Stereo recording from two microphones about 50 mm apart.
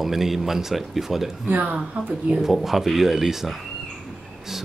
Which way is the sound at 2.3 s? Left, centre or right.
Centre.